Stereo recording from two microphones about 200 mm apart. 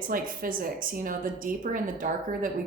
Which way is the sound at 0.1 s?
45° right (ahead or behind).